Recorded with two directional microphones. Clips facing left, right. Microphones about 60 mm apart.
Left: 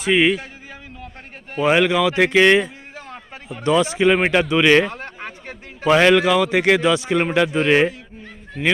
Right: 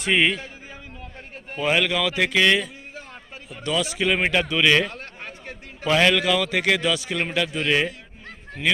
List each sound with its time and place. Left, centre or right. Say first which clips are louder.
0.0 s a man's voice: left 4 dB; centre
1.5 s a man's voice: left 6 dB; centre